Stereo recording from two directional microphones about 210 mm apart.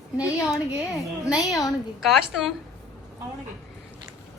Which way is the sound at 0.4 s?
Centre (ahead or behind).